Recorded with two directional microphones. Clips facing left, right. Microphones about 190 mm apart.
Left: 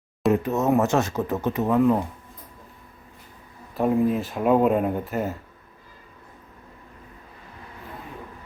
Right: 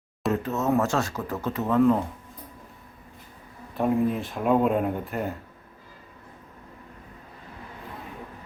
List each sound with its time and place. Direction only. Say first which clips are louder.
0.3 s speech: left 4 dB; 15° left (ahead or behind)
3.8 s speech: left 2 dB; centre (ahead or behind)